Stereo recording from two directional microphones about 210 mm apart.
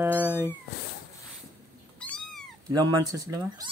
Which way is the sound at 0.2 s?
10° right (ahead or behind).